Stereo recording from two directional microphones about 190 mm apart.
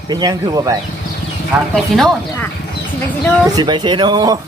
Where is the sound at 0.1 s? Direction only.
20° right (ahead or behind).